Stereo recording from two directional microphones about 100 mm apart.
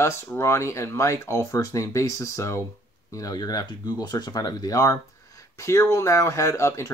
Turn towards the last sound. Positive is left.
turn(degrees=25)  # may be behind; listen again after turning